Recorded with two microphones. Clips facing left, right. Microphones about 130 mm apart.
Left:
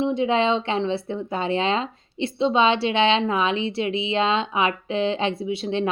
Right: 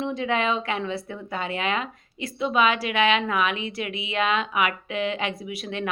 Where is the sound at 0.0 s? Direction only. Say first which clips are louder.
Left 5 dB; 25° left (ahead or behind).